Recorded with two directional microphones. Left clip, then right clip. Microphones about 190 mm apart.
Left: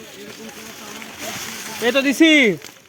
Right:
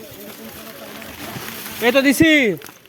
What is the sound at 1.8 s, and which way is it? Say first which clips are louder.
Speech: right 1 dB; 25° right (ahead or behind).